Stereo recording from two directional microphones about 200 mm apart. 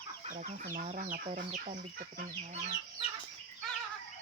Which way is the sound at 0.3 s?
40° right (ahead or behind).